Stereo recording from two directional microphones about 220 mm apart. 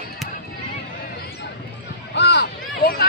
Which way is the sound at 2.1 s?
50° left (ahead or behind).